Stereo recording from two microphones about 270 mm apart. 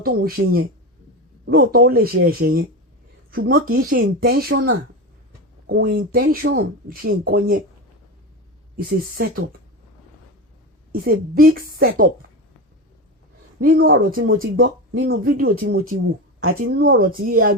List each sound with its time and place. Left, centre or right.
0.0 s speech: right
8.8 s speech: right
10.9 s speech: right
13.8 s speech: right
14.3 s speech: right
15.2 s speech: right
16.4 s speech: right
16.8 s speech: right